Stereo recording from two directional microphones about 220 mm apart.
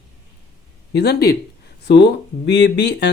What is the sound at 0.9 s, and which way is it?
Speech, 45° left (ahead or behind).